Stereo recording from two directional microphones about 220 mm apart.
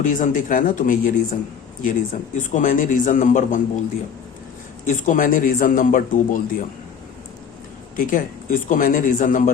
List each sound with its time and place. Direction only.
0.0 s a man's voice: 35° left (ahead or behind)
4.9 s a man's voice: 35° left (ahead or behind)
7.9 s a man's voice: 40° left (ahead or behind)